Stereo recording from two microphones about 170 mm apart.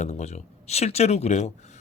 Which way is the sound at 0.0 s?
40° left (ahead or behind).